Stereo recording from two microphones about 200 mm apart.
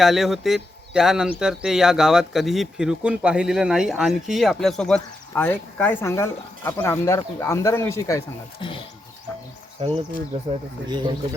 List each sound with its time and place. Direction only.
0.0 s speech: centre (ahead or behind); by 8.8 s 25° left (ahead or behind)
9.8 s speech: 25° right (ahead or behind)